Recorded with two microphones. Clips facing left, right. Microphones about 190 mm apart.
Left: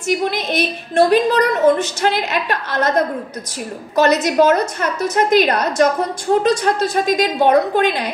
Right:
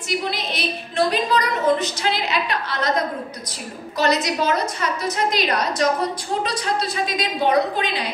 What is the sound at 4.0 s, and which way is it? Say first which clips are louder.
A woman's voice: left 7 dB; 50° left (ahead or behind).